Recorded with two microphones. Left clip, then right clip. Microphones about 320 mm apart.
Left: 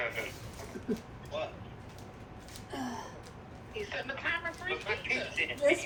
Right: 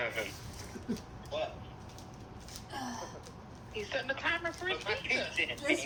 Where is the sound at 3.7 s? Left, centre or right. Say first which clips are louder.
Right 2 dB; right.